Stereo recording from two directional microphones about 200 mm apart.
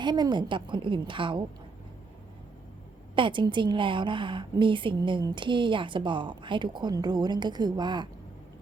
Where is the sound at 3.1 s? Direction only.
25° right (ahead or behind).